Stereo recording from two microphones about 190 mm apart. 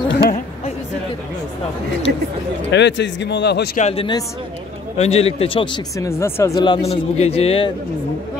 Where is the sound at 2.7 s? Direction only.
65° left (ahead or behind).